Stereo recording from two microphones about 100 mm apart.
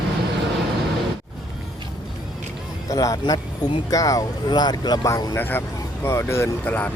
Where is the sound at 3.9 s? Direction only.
35° left (ahead or behind).